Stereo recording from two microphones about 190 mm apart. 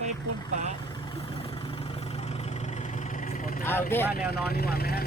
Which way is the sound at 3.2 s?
45° left (ahead or behind).